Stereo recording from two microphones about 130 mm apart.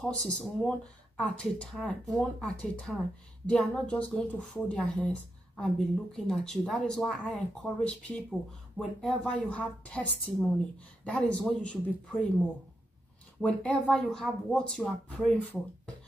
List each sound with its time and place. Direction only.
0.0 s speech: 5° left (ahead or behind)
10.1 s speech: centre (ahead or behind)
13.4 s speech: 10° left (ahead or behind)